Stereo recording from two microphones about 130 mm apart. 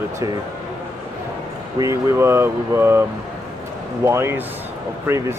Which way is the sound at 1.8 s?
20° right (ahead or behind).